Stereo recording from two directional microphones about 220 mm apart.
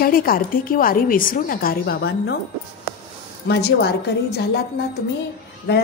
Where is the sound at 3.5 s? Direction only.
45° left (ahead or behind).